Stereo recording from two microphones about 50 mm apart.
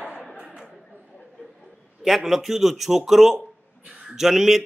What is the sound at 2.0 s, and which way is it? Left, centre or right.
Speech, centre.